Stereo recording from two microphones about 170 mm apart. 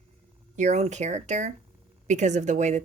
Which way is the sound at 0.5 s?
45° right (ahead or behind).